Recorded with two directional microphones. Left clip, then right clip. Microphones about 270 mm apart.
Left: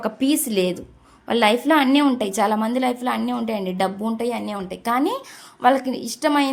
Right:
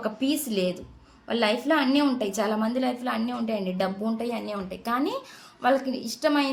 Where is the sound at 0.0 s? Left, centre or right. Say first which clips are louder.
Left 6 dB; left.